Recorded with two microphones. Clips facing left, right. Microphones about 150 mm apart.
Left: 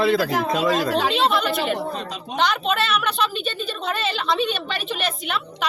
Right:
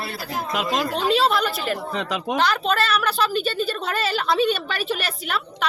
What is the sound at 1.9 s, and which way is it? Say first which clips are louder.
Speech: right 5 dB; 90° right.